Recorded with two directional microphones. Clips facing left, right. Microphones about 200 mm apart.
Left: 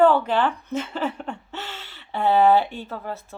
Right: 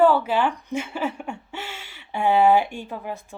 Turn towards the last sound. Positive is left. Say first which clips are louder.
# even
turn(degrees=-15)  # may be behind; listen again after turning